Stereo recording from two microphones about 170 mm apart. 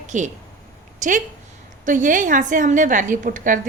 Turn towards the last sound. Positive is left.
turn(degrees=-50)  # may be behind; listen again after turning